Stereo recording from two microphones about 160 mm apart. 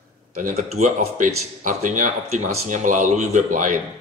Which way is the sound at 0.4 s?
50° right (ahead or behind).